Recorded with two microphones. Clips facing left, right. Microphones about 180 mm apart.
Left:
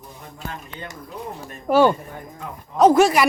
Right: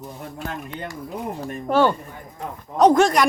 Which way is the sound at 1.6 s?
10° left (ahead or behind).